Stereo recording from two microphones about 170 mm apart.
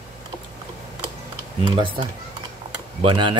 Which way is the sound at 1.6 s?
30° right (ahead or behind).